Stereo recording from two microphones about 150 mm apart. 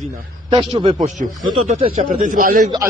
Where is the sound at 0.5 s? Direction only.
35° right (ahead or behind).